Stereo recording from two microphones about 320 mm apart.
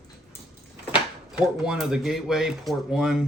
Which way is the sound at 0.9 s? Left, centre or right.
Centre.